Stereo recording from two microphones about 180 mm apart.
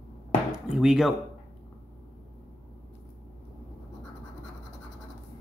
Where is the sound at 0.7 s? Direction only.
5° right (ahead or behind).